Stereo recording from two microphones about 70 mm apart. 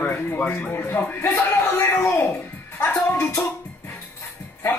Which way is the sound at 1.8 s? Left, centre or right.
Left.